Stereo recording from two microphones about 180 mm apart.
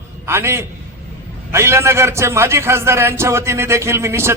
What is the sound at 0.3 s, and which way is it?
A man's voice, 15° right (ahead or behind).